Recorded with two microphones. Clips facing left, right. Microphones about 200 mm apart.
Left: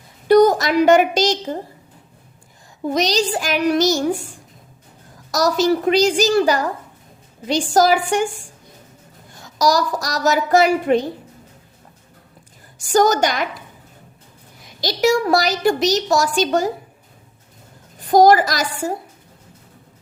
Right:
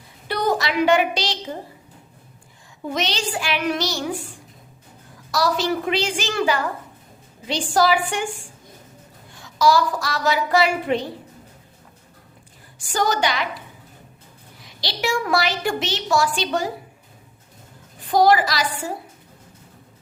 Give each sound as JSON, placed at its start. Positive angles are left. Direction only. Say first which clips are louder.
{"t": 0.3, "sound": "a woman's voice", "louder": "left 10 dB", "side_deg": 45}
{"t": 2.8, "sound": "a woman's voice", "louder": "left 7 dB", "side_deg": 40}
{"t": 5.3, "sound": "a woman's voice", "louder": "left 5 dB", "side_deg": 45}
{"t": 9.3, "sound": "a woman's voice", "louder": "even", "side_deg": 40}
{"t": 12.9, "sound": "a woman's voice", "louder": "left 6 dB", "side_deg": 45}
{"t": 14.6, "sound": "a woman's voice", "louder": "left 9 dB", "side_deg": 45}
{"t": 18.1, "sound": "a woman's voice", "louder": "left 4 dB", "side_deg": 45}